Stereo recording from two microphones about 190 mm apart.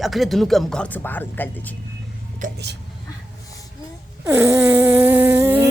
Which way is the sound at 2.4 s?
45° right (ahead or behind).